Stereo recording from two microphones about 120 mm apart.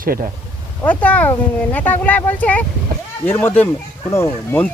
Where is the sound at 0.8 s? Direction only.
10° left (ahead or behind).